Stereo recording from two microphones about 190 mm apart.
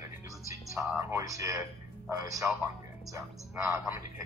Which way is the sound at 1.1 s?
15° right (ahead or behind).